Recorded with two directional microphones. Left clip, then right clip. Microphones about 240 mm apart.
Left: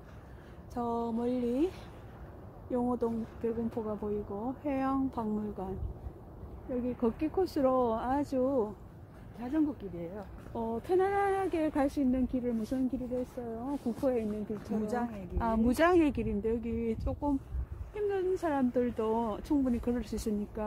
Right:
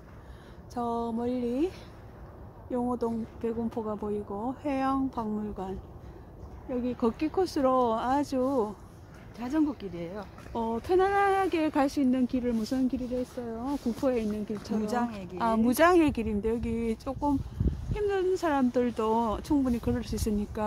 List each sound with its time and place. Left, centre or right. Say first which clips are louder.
0.7 s speech: right 3 dB; centre
7.0 s speech: right 3 dB; centre
9.4 s speech: right 3 dB; right
15.3 s speech: right 4 dB; centre